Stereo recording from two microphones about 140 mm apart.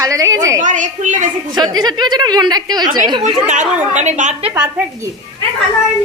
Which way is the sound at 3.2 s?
60° right (ahead or behind).